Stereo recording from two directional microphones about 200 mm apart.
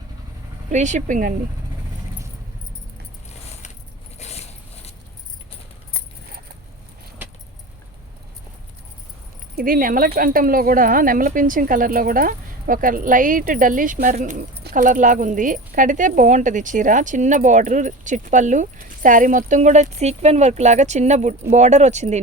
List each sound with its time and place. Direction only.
0.7 s speech: 35° right (ahead or behind)
4.2 s a sound: 35° left (ahead or behind)
9.6 s speech: 45° right (ahead or behind)